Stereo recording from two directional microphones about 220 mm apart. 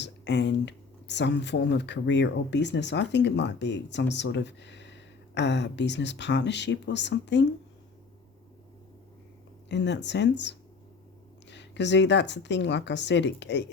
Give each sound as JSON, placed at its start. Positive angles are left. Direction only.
{"t": 0.0, "sound": "speech", "side_deg": 50}
{"t": 9.6, "sound": "speech", "side_deg": 50}